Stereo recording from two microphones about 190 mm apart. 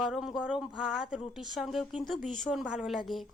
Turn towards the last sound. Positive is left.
turn(degrees=0)  # may be behind; listen again after turning